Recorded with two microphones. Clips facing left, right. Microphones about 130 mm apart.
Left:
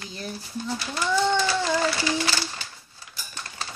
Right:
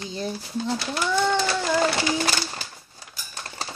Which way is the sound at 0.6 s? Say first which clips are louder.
Right 3 dB; 70° right (ahead or behind).